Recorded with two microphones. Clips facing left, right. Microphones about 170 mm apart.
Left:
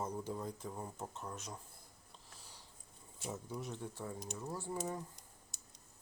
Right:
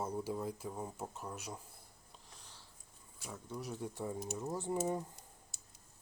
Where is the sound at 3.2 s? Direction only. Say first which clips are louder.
Left 4 dB; 20° left (ahead or behind).